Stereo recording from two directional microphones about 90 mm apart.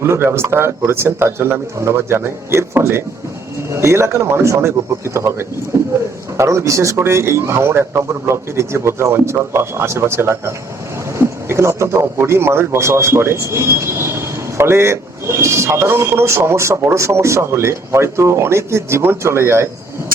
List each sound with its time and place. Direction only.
0.0 s a man's voice: 30° right (ahead or behind)